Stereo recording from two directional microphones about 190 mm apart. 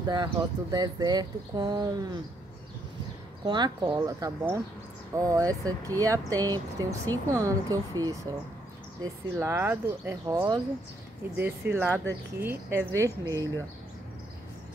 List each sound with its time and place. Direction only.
0.0 s speech: 20° right (ahead or behind)
3.4 s speech: 20° right (ahead or behind)
11.7 s speech: 10° right (ahead or behind)